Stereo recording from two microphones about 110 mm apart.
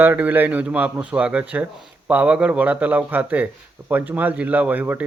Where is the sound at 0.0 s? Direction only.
15° right (ahead or behind).